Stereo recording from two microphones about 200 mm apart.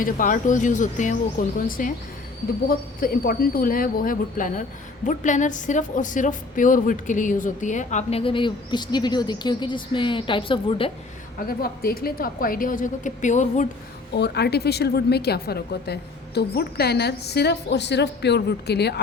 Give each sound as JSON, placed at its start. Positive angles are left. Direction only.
{"t": 0.0, "sound": "a woman's voice", "side_deg": 40}
{"t": 11.3, "sound": "a woman's voice", "side_deg": 50}
{"t": 14.1, "sound": "a woman's voice", "side_deg": 55}